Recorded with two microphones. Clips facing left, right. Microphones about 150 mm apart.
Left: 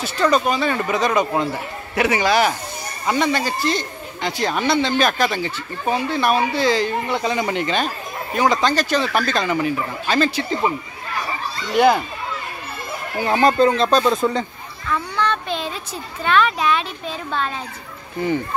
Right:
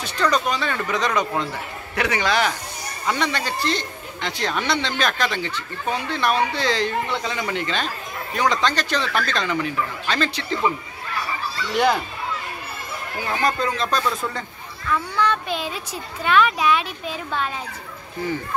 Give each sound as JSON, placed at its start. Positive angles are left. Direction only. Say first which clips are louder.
{"t": 0.0, "sound": "speech", "louder": "left 4 dB", "side_deg": 5}
{"t": 11.7, "sound": "speech", "louder": "left 5 dB", "side_deg": 5}
{"t": 13.2, "sound": "speech", "louder": "left 8 dB", "side_deg": 25}
{"t": 15.1, "sound": "a child's voice", "louder": "even", "side_deg": -10}